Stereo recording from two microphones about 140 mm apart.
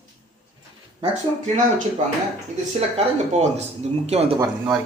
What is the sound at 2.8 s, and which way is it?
Speech, 50° right (ahead or behind).